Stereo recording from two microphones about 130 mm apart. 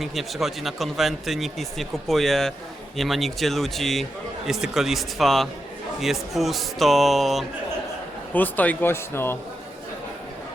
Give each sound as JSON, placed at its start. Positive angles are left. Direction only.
{"t": 0.0, "sound": "speech", "side_deg": 0}
{"t": 8.3, "sound": "speech", "side_deg": 15}